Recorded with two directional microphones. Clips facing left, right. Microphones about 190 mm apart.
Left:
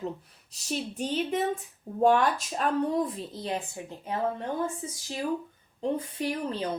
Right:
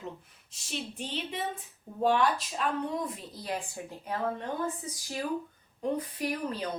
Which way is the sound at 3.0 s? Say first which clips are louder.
Left 6 dB; 25° left (ahead or behind).